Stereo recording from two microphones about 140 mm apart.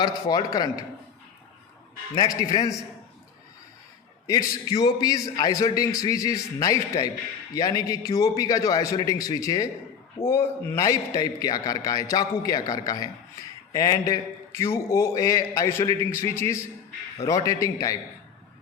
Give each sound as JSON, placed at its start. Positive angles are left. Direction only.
{"t": 0.0, "sound": "a man's voice", "side_deg": 30}
{"t": 2.1, "sound": "a man's voice", "side_deg": 25}
{"t": 4.3, "sound": "a man's voice", "side_deg": 25}